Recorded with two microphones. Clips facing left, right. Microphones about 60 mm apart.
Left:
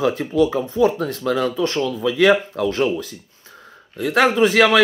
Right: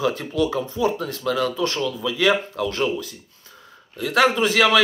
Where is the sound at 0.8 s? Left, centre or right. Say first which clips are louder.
Left 6 dB; left.